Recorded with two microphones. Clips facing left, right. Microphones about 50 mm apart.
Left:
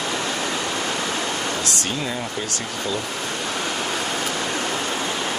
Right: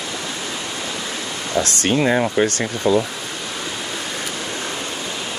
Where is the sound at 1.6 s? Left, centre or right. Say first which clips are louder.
Right 8 dB; right.